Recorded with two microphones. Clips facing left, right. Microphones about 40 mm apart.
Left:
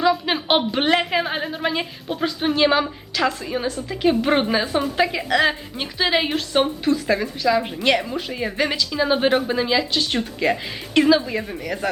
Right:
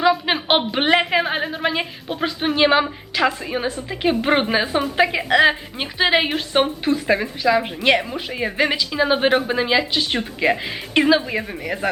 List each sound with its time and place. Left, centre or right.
0.0 s a woman's voice: centre